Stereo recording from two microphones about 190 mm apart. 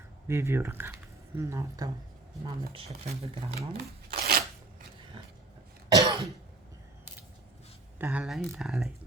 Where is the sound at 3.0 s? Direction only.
35° right (ahead or behind).